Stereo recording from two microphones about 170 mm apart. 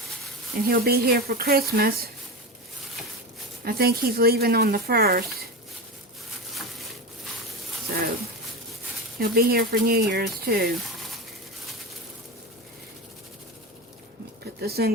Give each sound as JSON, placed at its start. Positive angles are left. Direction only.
{"t": 0.5, "sound": "speech", "side_deg": -65}
{"t": 3.6, "sound": "speech", "side_deg": -65}
{"t": 9.1, "sound": "speech", "side_deg": -60}
{"t": 14.6, "sound": "speech", "side_deg": -65}